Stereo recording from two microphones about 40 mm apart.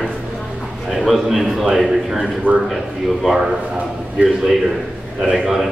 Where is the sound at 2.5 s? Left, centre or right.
Right.